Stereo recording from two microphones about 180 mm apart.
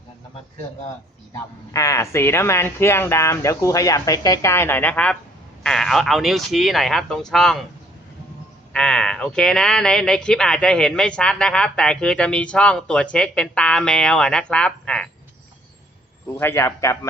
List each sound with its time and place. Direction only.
1.7 s speech: 20° left (ahead or behind); by 7.6 s centre (ahead or behind)
8.7 s speech: 5° left (ahead or behind)
16.4 s speech: 15° left (ahead or behind)